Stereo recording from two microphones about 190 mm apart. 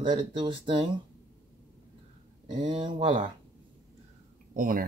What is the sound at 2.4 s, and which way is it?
Speech, 25° right (ahead or behind).